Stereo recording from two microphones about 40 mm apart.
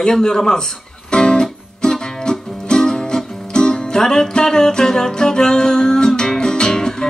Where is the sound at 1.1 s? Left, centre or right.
Centre.